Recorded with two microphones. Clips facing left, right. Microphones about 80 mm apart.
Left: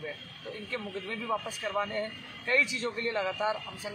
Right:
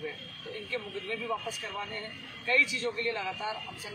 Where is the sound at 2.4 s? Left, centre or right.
Left.